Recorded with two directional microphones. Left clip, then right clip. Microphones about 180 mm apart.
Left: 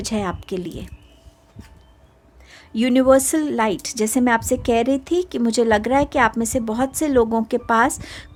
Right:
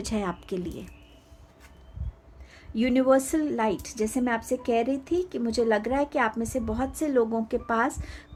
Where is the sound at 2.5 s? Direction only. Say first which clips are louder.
Left 7 dB; 40° left (ahead or behind).